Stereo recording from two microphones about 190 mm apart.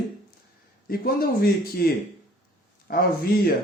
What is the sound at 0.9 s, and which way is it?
Speech, 50° left (ahead or behind).